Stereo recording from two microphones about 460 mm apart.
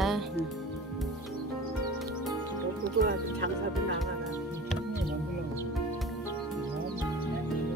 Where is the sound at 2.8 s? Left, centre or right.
Right.